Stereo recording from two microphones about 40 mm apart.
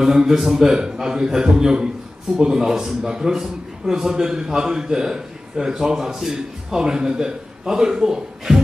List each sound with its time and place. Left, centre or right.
0.0 s a man's voice: centre